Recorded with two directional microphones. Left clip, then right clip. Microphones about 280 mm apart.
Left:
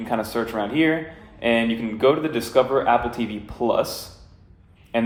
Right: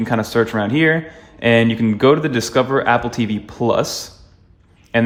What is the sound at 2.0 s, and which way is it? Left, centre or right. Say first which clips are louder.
Speech: right 4 dB; right.